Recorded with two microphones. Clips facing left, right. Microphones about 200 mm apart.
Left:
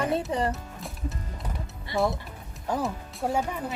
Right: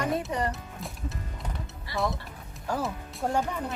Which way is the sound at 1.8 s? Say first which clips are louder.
Left 4 dB; 25° left (ahead or behind).